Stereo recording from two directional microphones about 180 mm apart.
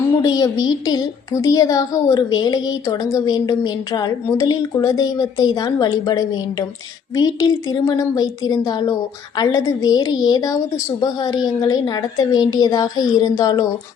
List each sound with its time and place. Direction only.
0.2 s a woman's voice: 20° left (ahead or behind)